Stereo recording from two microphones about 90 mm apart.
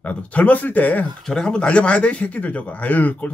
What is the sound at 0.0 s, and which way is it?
A man's voice, 15° left (ahead or behind).